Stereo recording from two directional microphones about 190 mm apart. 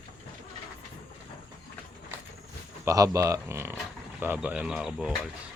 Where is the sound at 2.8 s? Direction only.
15° right (ahead or behind).